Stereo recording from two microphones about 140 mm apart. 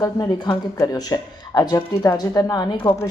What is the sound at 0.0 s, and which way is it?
A woman's voice, 30° left (ahead or behind).